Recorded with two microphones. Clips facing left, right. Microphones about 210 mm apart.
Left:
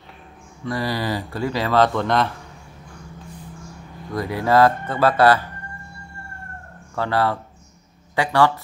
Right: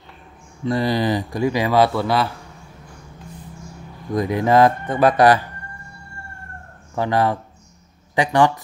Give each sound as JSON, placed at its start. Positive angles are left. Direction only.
{"t": 0.7, "sound": "speech", "side_deg": -20}
{"t": 4.1, "sound": "speech", "side_deg": -20}
{"t": 7.0, "sound": "speech", "side_deg": -15}